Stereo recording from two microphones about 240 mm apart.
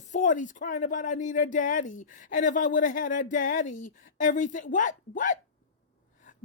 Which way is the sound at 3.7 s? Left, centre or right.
Left.